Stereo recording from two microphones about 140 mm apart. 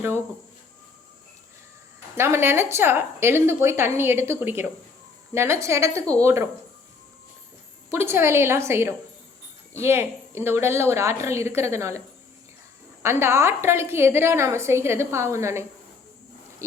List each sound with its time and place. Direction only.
2.1 s a woman's voice: 15° right (ahead or behind)
7.9 s a woman's voice: 15° right (ahead or behind)